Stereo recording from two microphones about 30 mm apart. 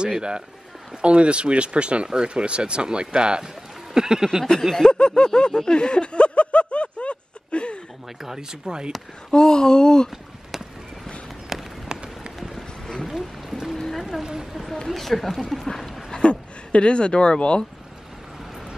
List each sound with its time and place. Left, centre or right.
1.0 s speech: right
3.9 s a sound: right
4.7 s snicker: left
8.2 s speech: centre
9.3 s speech: left
11.9 s run: right
13.1 s speech: centre
13.7 s a sound: centre
14.2 s speech: centre
14.5 s speech: centre
16.1 s speech: left